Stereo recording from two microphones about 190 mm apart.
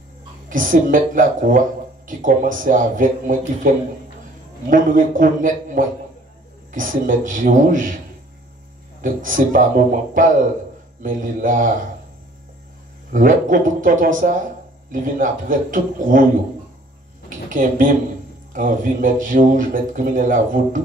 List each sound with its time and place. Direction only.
0.5 s a man's voice: 45° right (ahead or behind)
9.0 s a man's voice: 45° right (ahead or behind)
13.1 s a man's voice: 45° right (ahead or behind)
17.5 s a man's voice: 45° right (ahead or behind)